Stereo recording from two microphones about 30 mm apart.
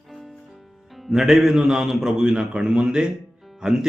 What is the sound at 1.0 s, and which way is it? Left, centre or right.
A man's voice, centre.